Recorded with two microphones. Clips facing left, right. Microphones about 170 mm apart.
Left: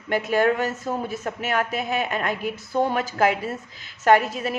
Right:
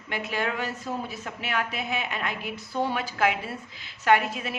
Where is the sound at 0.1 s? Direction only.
45° left (ahead or behind).